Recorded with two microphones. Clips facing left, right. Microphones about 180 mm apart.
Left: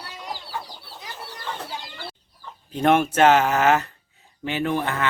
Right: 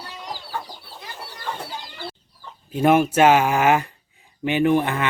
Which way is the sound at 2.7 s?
5° right (ahead or behind).